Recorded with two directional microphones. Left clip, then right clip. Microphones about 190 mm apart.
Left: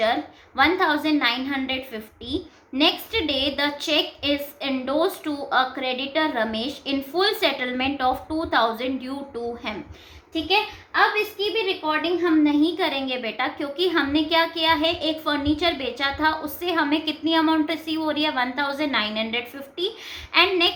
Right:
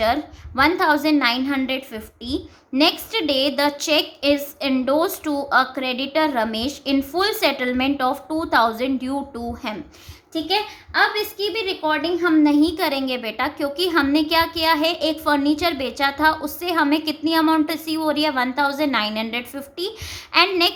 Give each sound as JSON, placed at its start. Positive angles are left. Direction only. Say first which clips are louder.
{"t": 0.0, "sound": "a woman's voice", "louder": "right 2 dB", "side_deg": -45}
{"t": 10.9, "sound": "a woman's voice", "louder": "right 1 dB", "side_deg": -55}